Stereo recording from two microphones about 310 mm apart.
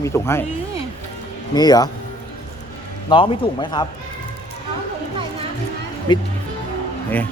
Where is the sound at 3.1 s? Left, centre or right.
Centre.